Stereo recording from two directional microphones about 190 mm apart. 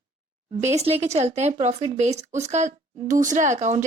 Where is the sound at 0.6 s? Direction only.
35° right (ahead or behind).